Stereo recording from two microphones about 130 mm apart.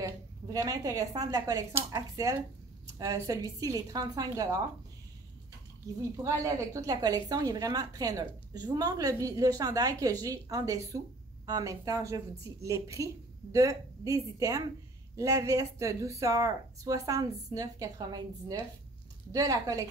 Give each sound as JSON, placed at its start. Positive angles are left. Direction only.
{"t": 0.0, "sound": "a woman's voice", "side_deg": -25}
{"t": 6.2, "sound": "a woman's voice", "side_deg": -25}